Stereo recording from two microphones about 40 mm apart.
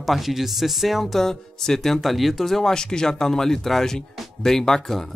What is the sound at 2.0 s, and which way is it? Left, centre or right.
Speech, centre.